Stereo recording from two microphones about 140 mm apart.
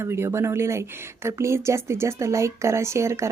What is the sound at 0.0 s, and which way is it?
Speech, 20° right (ahead or behind).